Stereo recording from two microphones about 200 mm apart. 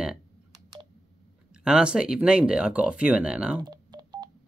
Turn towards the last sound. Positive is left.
turn(degrees=-20)  # may be behind; listen again after turning